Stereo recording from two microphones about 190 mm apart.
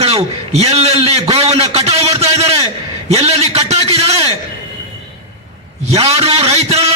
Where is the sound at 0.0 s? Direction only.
30° right (ahead or behind).